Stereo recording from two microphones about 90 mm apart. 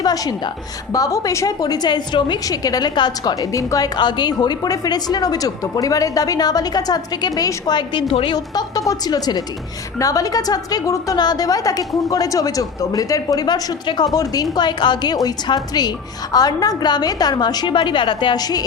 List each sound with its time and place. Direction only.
0.0 s a woman's voice: 45° left (ahead or behind)
2.5 s a woman's voice: 45° left (ahead or behind)
3.5 s speech: 40° left (ahead or behind)
3.9 s a woman's voice: 55° left (ahead or behind)
8.1 s a woman's voice: 80° left
8.5 s a woman's voice: 40° left (ahead or behind)
14.5 s a woman's voice: 55° left (ahead or behind)